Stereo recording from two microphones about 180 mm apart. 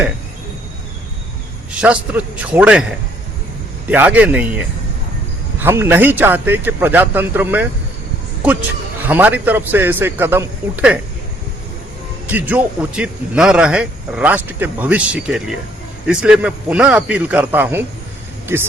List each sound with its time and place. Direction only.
1.7 s speech: 5° right (ahead or behind)
3.9 s speech: 10° right (ahead or behind)
9.0 s speech: 10° right (ahead or behind)
12.3 s speech: 10° right (ahead or behind)